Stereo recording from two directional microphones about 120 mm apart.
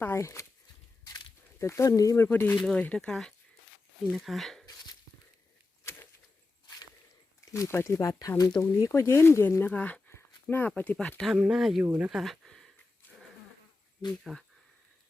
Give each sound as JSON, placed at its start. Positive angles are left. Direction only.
{"t": 0.0, "sound": "speech", "side_deg": 20}
{"t": 1.0, "sound": "walk", "side_deg": 35}
{"t": 1.5, "sound": "speech", "side_deg": 25}
{"t": 5.8, "sound": "a sound", "side_deg": 20}
{"t": 7.5, "sound": "speech", "side_deg": 25}
{"t": 8.6, "sound": "speech", "side_deg": 20}
{"t": 11.2, "sound": "speech", "side_deg": -5}
{"t": 11.9, "sound": "speech", "side_deg": -15}
{"t": 12.1, "sound": "a sound", "side_deg": 0}
{"t": 14.3, "sound": "speech", "side_deg": 5}